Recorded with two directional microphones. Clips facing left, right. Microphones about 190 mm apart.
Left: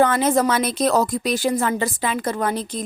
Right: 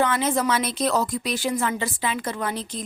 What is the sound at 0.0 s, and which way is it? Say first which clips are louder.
A woman's voice: left 5 dB; 45° left (ahead or behind).